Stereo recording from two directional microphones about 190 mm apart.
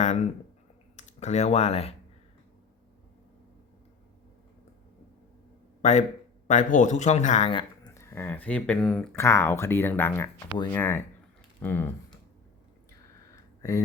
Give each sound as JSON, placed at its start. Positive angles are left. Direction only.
{"t": 0.9, "sound": "speech", "side_deg": 40}
{"t": 5.8, "sound": "speech", "side_deg": 35}
{"t": 7.9, "sound": "speech", "side_deg": 15}
{"t": 13.3, "sound": "a sound", "side_deg": 15}